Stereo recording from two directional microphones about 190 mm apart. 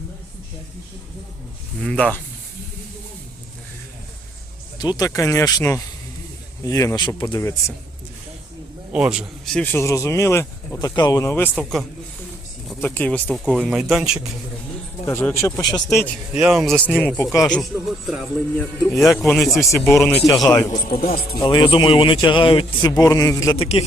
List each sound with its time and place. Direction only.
1.8 s speech: 5° left (ahead or behind)
4.8 s speech: 20° left (ahead or behind)
8.9 s speech: 5° right (ahead or behind)
15.0 s speech: 15° left (ahead or behind)
16.3 s speech: 5° right (ahead or behind)
19.7 s speech: 15° left (ahead or behind)
20.8 s a man's voice: 50° left (ahead or behind)
21.3 s speech: 25° left (ahead or behind)